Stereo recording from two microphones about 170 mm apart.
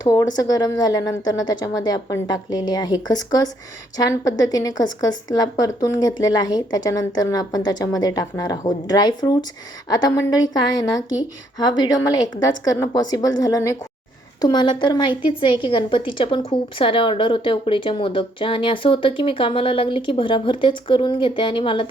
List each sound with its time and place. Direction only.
0.0 s a woman's voice: 20° left (ahead or behind)